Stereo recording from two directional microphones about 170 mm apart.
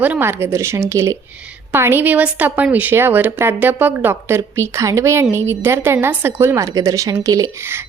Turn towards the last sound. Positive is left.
turn(degrees=-20)  # may be behind; listen again after turning